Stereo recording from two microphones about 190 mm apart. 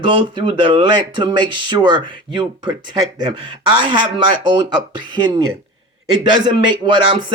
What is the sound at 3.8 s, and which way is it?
Speech, 25° right (ahead or behind).